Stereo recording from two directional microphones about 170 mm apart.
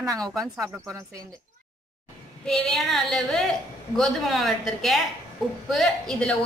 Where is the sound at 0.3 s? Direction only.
Centre (ahead or behind).